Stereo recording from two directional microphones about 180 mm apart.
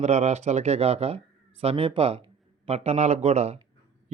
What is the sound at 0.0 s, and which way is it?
Speech, 40° right (ahead or behind).